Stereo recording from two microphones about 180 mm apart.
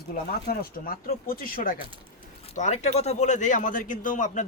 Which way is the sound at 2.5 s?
40° left (ahead or behind).